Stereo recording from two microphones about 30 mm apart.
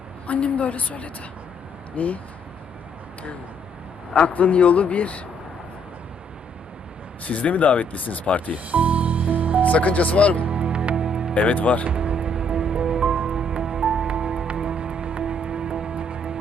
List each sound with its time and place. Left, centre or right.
0.3 s a man's voice: left
4.1 s a man's voice: left
7.3 s speech: left
8.5 s music: right
9.6 s speech: left
10.5 s music: right
11.3 s speech: left
11.9 s music: right